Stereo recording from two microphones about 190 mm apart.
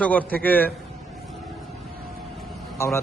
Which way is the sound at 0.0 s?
10° left (ahead or behind).